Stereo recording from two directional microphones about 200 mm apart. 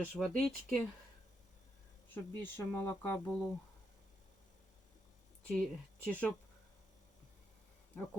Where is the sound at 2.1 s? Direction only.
10° left (ahead or behind).